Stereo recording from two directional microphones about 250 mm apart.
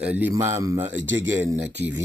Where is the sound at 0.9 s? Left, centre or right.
Right.